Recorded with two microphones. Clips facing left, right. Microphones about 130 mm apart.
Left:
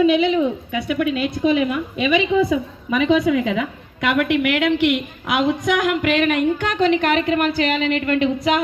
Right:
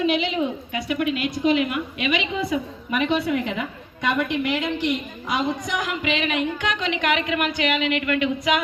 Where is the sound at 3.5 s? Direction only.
90° left.